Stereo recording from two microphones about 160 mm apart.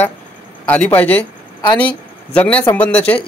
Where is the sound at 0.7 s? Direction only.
10° left (ahead or behind).